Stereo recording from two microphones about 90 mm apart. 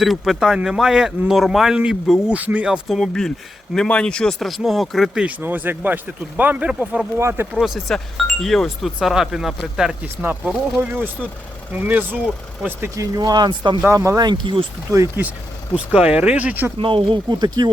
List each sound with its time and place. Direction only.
0.0 s speech: centre (ahead or behind)
2.9 s speech: 5° left (ahead or behind)
5.2 s speech: 20° right (ahead or behind)
7.2 s speech: 30° right (ahead or behind)
7.5 s speech: 5° right (ahead or behind)
10.9 s speech: 25° right (ahead or behind)
13.0 s speech: 45° right (ahead or behind)
13.9 s speech: 30° right (ahead or behind)
14.2 s speech: 55° right (ahead or behind)
14.9 s speech: 45° right (ahead or behind)
15.7 s speech: 10° right (ahead or behind)
16.7 s speech: 75° right (ahead or behind); by 17.7 s 50° right (ahead or behind)